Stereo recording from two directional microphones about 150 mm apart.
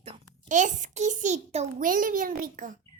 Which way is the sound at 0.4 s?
55° right (ahead or behind).